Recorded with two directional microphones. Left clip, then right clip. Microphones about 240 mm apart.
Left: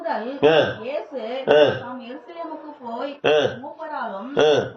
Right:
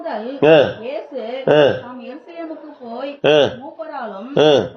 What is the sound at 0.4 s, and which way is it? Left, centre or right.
Speech, right.